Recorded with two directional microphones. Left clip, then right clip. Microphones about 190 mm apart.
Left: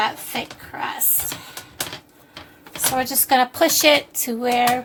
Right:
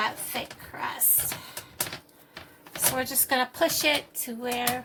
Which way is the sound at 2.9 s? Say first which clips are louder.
Left 10 dB; 30° left (ahead or behind).